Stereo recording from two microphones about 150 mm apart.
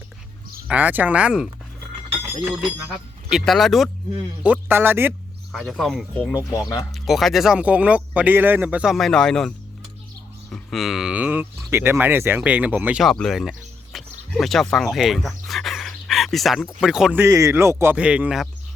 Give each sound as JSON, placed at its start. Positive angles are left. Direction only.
{"t": 0.7, "sound": "speech", "side_deg": -10}
{"t": 3.2, "sound": "speech", "side_deg": 0}
{"t": 4.4, "sound": "speech", "side_deg": -10}
{"t": 5.5, "sound": "speech", "side_deg": 0}
{"t": 6.5, "sound": "speech", "side_deg": 25}
{"t": 6.9, "sound": "speech", "side_deg": 0}
{"t": 10.5, "sound": "speech", "side_deg": 0}
{"t": 13.0, "sound": "speech", "side_deg": 0}